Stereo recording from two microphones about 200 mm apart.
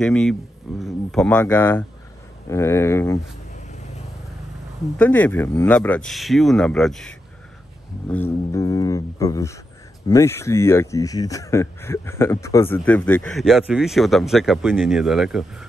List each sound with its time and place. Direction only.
0.0 s speech: 5° left (ahead or behind)
4.9 s speech: 10° left (ahead or behind)